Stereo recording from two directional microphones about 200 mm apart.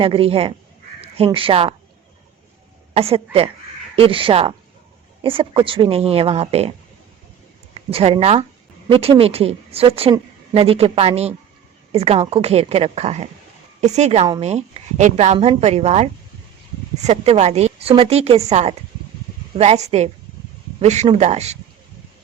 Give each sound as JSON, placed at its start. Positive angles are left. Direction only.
{"t": 0.0, "sound": "a woman's voice", "side_deg": -25}
{"t": 2.9, "sound": "a woman's voice", "side_deg": -30}